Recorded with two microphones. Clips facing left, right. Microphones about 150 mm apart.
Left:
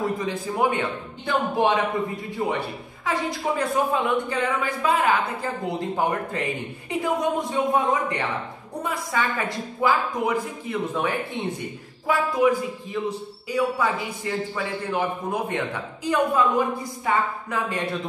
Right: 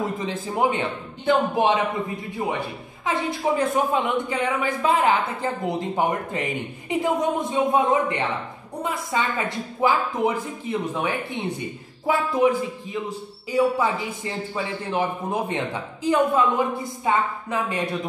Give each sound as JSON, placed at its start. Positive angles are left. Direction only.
{"t": 0.0, "sound": "speech", "side_deg": -20}
{"t": 3.1, "sound": "speech", "side_deg": -20}
{"t": 12.4, "sound": "speech", "side_deg": -25}